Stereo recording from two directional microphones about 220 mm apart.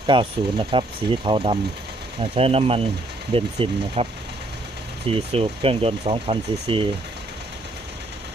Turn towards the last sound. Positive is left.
turn(degrees=-25)  # may be behind; listen again after turning